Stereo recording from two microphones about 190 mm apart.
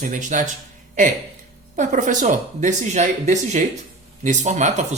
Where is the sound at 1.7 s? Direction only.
40° right (ahead or behind).